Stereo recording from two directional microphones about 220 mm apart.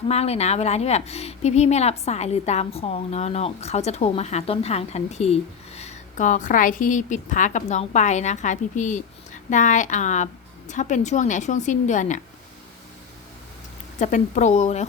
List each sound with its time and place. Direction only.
0.1 s a woman's voice: 30° left (ahead or behind)
14.0 s a woman's voice: 35° left (ahead or behind)